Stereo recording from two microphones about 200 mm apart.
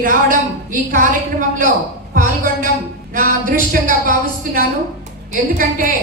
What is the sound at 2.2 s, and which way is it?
A woman's voice, 45° right (ahead or behind).